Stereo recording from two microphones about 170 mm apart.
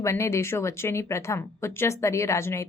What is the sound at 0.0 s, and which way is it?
A woman's voice, 15° left (ahead or behind).